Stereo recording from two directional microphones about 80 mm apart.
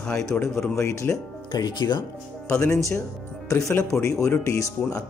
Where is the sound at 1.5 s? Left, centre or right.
Left.